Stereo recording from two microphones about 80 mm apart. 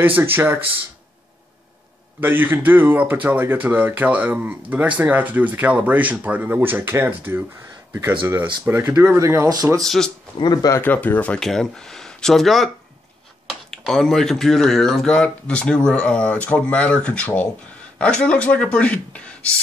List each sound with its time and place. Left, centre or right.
0.0 s speech: right
2.1 s speech: right
8.6 s speech: right
8.9 s speech: right
9.8 s speech: centre
10.4 s speech: left
10.8 s speech: left
11.3 s speech: centre